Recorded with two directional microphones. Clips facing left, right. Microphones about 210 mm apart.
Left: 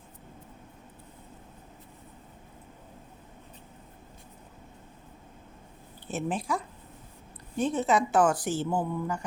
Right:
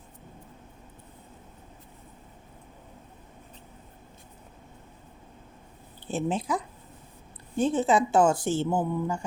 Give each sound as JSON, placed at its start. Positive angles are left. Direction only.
{"t": 6.1, "sound": "a woman's voice", "side_deg": -30}